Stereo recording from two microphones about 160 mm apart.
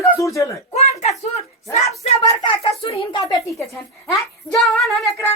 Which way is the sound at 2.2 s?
30° left (ahead or behind).